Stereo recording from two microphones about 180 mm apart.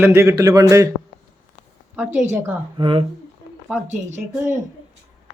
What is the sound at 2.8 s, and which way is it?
Speech, 30° right (ahead or behind).